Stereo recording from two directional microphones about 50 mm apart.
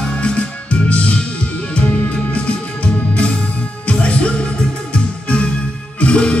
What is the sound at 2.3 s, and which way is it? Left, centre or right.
Music, left.